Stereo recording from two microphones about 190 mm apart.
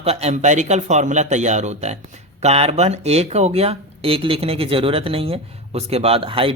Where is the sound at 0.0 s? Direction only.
30° right (ahead or behind).